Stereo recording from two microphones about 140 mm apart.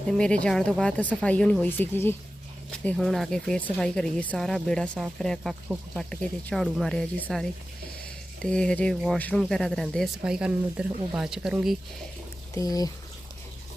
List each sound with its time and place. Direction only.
0.1 s speech: 5° left (ahead or behind)
8.4 s speech: 5° left (ahead or behind)
12.5 s speech: 25° left (ahead or behind)